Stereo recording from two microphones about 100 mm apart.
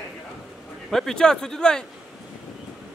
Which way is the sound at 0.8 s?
5° left (ahead or behind).